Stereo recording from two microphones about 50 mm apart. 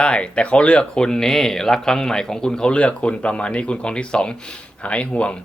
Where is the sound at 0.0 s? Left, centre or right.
Left.